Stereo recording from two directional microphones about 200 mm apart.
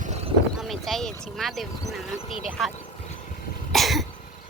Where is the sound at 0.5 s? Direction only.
Centre (ahead or behind).